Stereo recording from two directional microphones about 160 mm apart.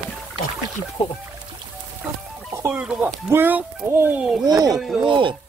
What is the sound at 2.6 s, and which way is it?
Speech, 10° right (ahead or behind).